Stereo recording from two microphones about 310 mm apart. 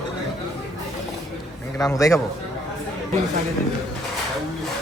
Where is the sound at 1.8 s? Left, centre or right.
Centre.